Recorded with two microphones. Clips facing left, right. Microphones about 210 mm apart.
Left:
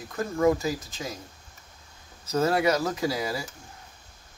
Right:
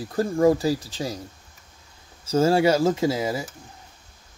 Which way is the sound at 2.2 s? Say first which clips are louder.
Right 5 dB; 30° right (ahead or behind).